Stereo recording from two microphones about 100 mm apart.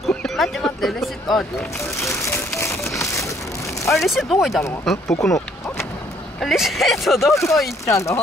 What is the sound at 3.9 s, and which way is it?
Speech, centre (ahead or behind).